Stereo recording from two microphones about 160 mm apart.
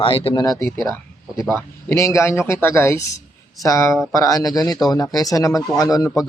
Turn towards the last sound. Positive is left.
turn(degrees=20)  # may be behind; listen again after turning